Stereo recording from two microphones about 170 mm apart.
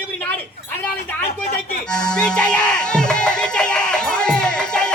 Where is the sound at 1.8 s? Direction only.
5° left (ahead or behind).